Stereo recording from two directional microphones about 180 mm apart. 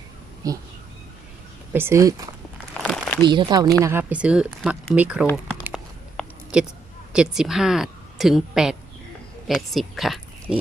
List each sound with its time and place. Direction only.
0.4 s speech: 20° right (ahead or behind)
1.7 s speech: 15° right (ahead or behind)
2.8 s a sound: 5° left (ahead or behind)
3.2 s speech: 25° right (ahead or behind); by 5.2 s 5° right (ahead or behind)
5.2 s speech: 10° left (ahead or behind)
6.5 s a woman's voice: 5° right (ahead or behind)
9.5 s oink: centre (ahead or behind)